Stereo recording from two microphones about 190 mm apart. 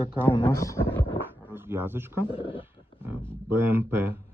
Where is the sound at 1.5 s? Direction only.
10° right (ahead or behind).